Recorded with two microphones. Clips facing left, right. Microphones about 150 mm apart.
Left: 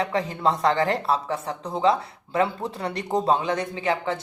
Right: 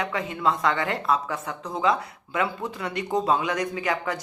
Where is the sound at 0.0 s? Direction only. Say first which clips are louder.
Left 2 dB; 35° left (ahead or behind).